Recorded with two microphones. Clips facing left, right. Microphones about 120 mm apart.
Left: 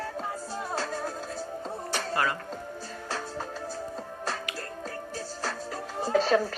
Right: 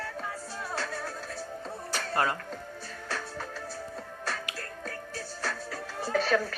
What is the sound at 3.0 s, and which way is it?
Music, 25° left (ahead or behind).